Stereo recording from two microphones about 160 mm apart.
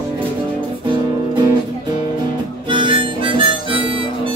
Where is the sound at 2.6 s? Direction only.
30° right (ahead or behind).